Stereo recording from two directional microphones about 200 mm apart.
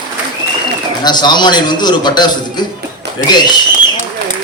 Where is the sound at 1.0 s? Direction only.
20° left (ahead or behind).